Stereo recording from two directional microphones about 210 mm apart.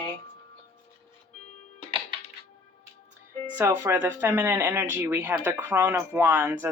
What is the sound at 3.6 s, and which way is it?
Speech, 10° right (ahead or behind).